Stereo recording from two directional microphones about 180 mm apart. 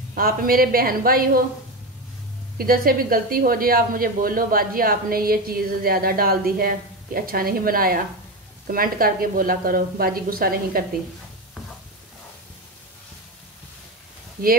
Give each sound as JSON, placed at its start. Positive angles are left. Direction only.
{"t": 0.1, "sound": "speech", "side_deg": -55}
{"t": 2.5, "sound": "speech", "side_deg": -55}
{"t": 14.4, "sound": "speech", "side_deg": -55}